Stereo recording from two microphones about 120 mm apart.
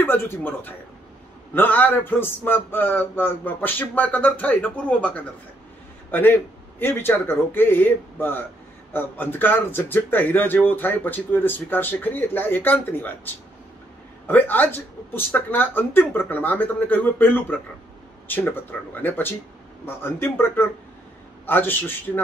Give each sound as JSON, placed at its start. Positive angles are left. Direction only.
{"t": 0.0, "sound": "speech", "side_deg": 20}
{"t": 14.2, "sound": "speech", "side_deg": 15}